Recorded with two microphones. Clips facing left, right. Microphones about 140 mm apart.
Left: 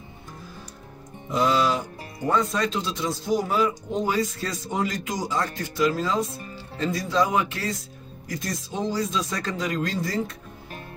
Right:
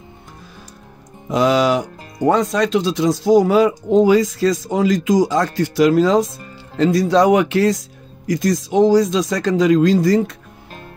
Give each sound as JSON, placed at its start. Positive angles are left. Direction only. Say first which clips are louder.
{"t": 1.3, "sound": "speech", "louder": "right 7 dB", "side_deg": -90}
{"t": 6.8, "sound": "speech", "louder": "right 10 dB", "side_deg": -80}